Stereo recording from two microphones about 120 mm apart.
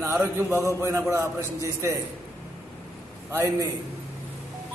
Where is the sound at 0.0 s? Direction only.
20° right (ahead or behind).